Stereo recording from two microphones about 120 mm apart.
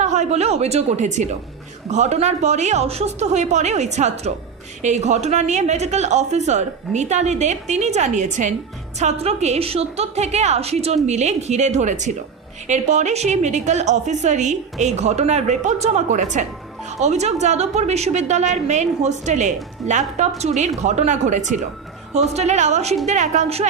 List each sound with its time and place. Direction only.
0.0 s a woman's voice: 75° right (ahead or behind); by 8.5 s 90° right
9.0 s a woman's voice: 65° right (ahead or behind); by 16.5 s 90° right
17.0 s a woman's voice: 70° right (ahead or behind)
19.9 s speech: 90° right
20.4 s a woman's voice: 75° right (ahead or behind)
22.3 s a woman's voice: 65° right (ahead or behind)
23.0 s a woman's voice: 85° right; by 23.6 s 70° right (ahead or behind)